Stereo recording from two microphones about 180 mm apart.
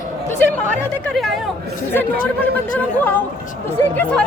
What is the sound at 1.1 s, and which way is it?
Speech, centre (ahead or behind).